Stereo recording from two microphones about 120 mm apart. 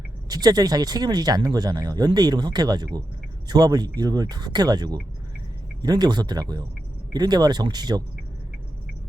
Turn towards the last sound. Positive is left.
turn(degrees=-35)  # may be behind; listen again after turning